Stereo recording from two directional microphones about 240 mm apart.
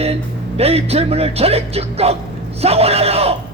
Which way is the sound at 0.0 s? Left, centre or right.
Right.